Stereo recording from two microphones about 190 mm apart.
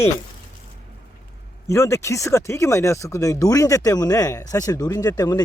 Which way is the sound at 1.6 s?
15° left (ahead or behind).